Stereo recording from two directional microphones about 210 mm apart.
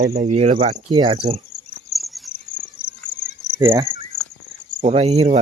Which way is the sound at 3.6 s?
20° right (ahead or behind).